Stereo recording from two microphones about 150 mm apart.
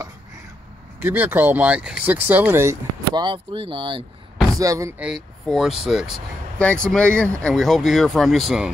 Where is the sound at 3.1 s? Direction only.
35° right (ahead or behind).